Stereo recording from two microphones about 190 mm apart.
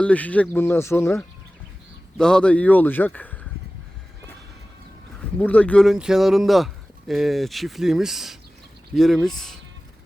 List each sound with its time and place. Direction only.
0.0 s speech: 5° left (ahead or behind)
2.1 s speech: 5° left (ahead or behind)
5.4 s speech: 5° left (ahead or behind)